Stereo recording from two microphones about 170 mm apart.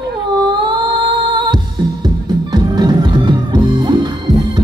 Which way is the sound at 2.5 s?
25° right (ahead or behind).